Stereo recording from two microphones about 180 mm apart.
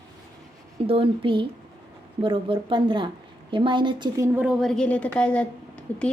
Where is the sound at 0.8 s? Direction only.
30° right (ahead or behind).